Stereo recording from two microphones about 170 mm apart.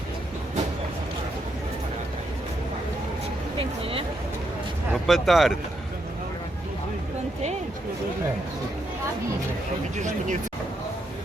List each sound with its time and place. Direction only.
5.0 s speech: centre (ahead or behind)
9.9 s speech: 45° right (ahead or behind)